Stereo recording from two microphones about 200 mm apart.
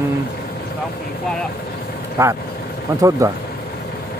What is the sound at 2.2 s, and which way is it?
Speech, 15° right (ahead or behind).